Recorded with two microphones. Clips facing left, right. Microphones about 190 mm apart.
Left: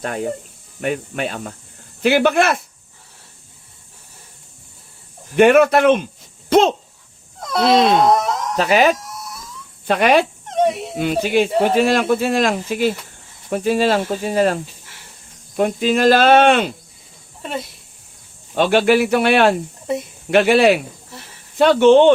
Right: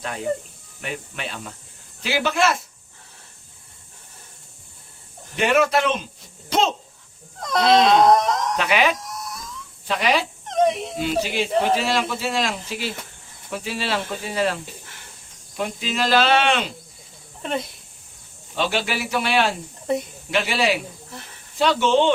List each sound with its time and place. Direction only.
0.0 s cricket: 50° left (ahead or behind)
2.0 s speech: 55° left (ahead or behind)
5.4 s speech: 55° left (ahead or behind)
7.4 s speech: 5° left (ahead or behind)
8.5 s speech: 40° left (ahead or behind)
9.8 s speech: 55° left (ahead or behind)
10.5 s whimper: 5° left (ahead or behind)
10.9 s cricket: 55° left (ahead or behind)
17.4 s speech: centre (ahead or behind)
18.5 s speech: 55° left (ahead or behind)